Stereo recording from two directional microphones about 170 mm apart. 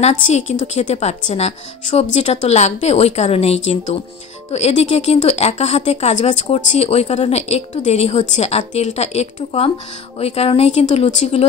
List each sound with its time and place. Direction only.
0.0 s a woman's voice: 40° left (ahead or behind)